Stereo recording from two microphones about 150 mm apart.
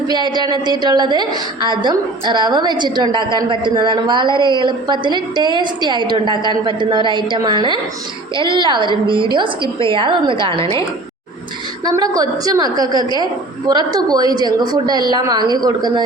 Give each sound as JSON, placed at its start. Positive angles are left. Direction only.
{"t": 0.1, "sound": "a woman's voice", "side_deg": -30}
{"t": 11.9, "sound": "a woman's voice", "side_deg": -25}